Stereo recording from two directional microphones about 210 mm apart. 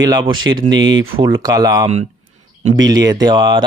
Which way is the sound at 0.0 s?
20° right (ahead or behind).